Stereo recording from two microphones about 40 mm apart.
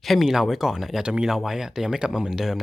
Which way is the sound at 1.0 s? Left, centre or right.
Right.